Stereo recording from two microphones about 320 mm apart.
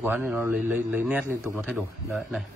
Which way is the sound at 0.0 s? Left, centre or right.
Centre.